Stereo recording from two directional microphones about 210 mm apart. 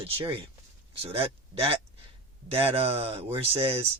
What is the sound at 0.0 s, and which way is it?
Speech, 25° right (ahead or behind).